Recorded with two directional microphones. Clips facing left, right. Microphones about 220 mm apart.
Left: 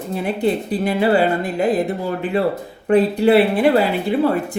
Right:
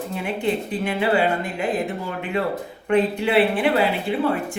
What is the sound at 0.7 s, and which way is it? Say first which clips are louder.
A woman's voice: left 5 dB; 40° left (ahead or behind).